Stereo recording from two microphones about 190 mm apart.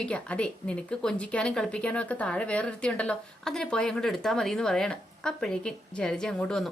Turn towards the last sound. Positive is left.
turn(degrees=5)  # may be behind; listen again after turning